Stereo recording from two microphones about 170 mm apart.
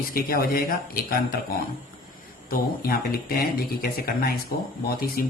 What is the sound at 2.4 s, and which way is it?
Speech, 60° left (ahead or behind).